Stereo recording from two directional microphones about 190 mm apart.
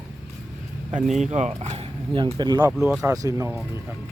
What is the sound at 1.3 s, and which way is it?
Speech, 35° right (ahead or behind).